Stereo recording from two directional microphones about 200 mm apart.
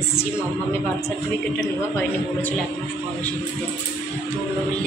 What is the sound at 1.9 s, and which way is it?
Speech, 10° left (ahead or behind).